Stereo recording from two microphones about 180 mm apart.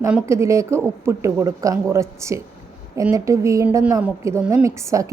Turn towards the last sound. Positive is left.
turn(degrees=-15)  # may be behind; listen again after turning